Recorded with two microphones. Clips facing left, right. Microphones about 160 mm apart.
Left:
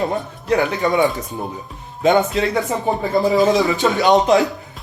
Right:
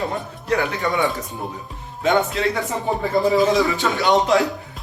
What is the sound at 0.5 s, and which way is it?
Speech, 20° left (ahead or behind).